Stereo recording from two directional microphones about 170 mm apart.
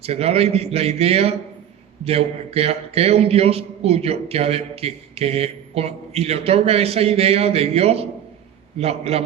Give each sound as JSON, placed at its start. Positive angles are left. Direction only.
{"t": 0.0, "sound": "a man's voice", "side_deg": -35}